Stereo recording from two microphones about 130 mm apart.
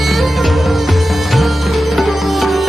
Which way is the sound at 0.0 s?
Centre (ahead or behind).